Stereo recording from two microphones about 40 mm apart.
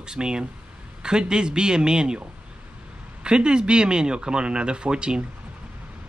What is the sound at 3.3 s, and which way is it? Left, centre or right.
Speech, right.